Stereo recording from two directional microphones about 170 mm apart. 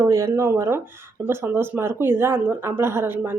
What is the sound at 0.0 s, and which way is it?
A woman's voice, 15° right (ahead or behind).